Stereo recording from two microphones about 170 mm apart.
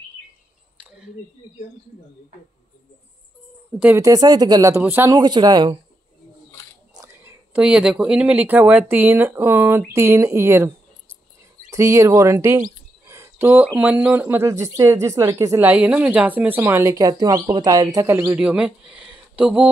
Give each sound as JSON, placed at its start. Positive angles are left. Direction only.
{"t": 0.7, "sound": "a sound", "side_deg": -5}
{"t": 3.8, "sound": "speech", "side_deg": -15}
{"t": 5.2, "sound": "speech", "side_deg": -25}
{"t": 7.5, "sound": "speech", "side_deg": -5}
{"t": 11.7, "sound": "speech", "side_deg": -20}